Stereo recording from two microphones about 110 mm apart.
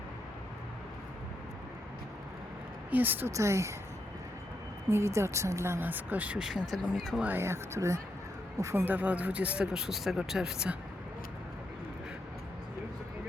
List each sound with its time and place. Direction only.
2.9 s speech: 15° right (ahead or behind)
4.9 s speech: 25° right (ahead or behind); by 7.3 s 5° right (ahead or behind)
7.3 s speech: 20° right (ahead or behind); by 10.8 s 5° right (ahead or behind)